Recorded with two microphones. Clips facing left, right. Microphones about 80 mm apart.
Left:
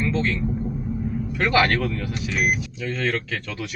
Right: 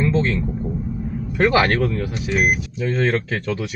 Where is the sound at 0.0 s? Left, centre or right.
Right.